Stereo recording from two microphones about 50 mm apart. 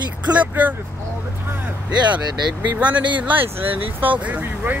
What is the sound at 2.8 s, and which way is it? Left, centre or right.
Speech, right.